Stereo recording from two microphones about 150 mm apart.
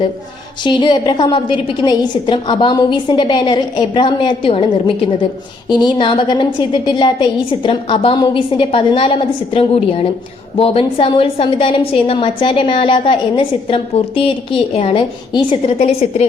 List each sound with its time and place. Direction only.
0.6 s a woman's voice: 30° left (ahead or behind)